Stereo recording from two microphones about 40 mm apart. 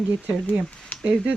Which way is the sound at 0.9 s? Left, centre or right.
Left.